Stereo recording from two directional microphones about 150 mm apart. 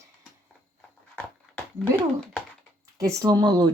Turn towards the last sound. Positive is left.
turn(degrees=-25)  # may be behind; listen again after turning